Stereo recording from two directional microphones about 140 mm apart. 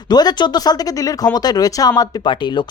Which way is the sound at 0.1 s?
30° left (ahead or behind).